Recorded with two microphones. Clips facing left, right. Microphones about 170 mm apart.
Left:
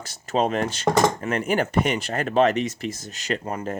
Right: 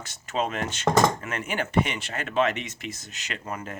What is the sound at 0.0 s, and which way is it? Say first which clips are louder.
Speech: left 5 dB; 35° left (ahead or behind).